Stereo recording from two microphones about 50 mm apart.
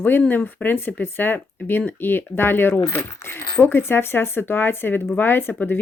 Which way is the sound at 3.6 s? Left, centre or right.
Left.